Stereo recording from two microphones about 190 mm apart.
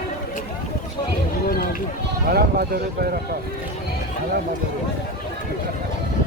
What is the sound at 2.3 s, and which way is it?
Speech, 55° right (ahead or behind).